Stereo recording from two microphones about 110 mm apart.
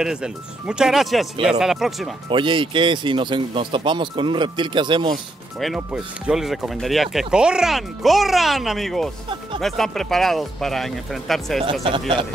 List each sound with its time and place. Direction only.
0.0 s speech: 5° right (ahead or behind)
2.2 s speech: 50° right (ahead or behind)
5.9 s speech: 5° right (ahead or behind)
12.1 s speech: 55° right (ahead or behind)